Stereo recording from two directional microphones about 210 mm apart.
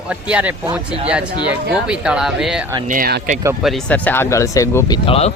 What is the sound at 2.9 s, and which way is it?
Speech, 40° right (ahead or behind).